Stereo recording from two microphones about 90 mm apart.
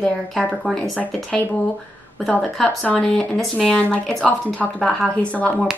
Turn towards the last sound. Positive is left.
turn(degrees=15)  # may be behind; listen again after turning